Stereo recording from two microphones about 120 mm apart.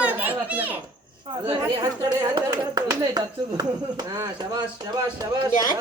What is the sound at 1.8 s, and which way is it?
Speech, 35° right (ahead or behind).